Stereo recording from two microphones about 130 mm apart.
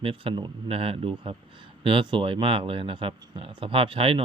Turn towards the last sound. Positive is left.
turn(degrees=-45)  # may be behind; listen again after turning